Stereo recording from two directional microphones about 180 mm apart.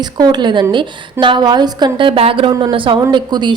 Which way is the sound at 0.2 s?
25° right (ahead or behind).